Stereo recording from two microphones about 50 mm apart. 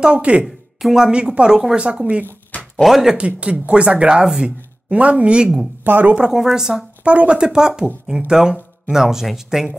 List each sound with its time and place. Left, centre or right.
0.0 s speech: right
2.8 s speech: centre
3.2 s speech: right
4.9 s speech: right
5.9 s speech: right
6.1 s speech: centre
7.1 s speech: right